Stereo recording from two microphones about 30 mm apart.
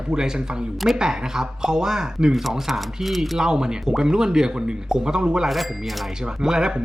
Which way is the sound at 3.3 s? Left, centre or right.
Right.